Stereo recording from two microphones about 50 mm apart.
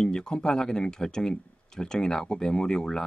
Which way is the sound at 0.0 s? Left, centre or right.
Centre.